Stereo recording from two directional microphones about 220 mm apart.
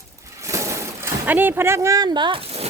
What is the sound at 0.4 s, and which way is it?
Speech, 15° right (ahead or behind).